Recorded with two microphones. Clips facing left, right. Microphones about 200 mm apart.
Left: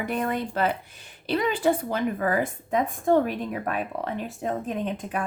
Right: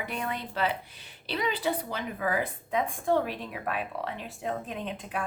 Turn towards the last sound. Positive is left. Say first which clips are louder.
# left 6 dB
turn(degrees=45)  # may be behind; listen again after turning